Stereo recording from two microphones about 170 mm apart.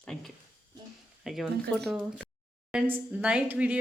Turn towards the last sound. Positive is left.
turn(degrees=-10)  # may be behind; listen again after turning